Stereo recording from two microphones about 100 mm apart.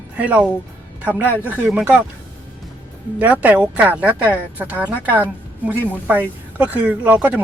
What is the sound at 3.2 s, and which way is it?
A woman's voice, 15° right (ahead or behind).